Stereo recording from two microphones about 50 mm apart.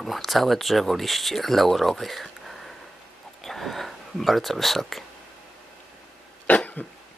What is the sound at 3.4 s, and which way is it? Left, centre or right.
Speech, centre.